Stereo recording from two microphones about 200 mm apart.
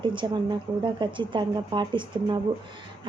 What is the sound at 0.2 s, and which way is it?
Speech, 20° right (ahead or behind).